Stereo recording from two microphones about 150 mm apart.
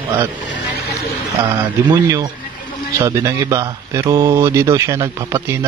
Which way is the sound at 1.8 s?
20° right (ahead or behind).